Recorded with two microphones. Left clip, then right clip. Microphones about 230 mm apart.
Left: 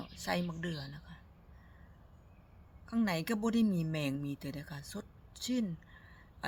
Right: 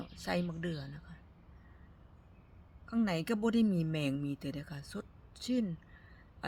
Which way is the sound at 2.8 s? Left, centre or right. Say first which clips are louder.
Even; centre.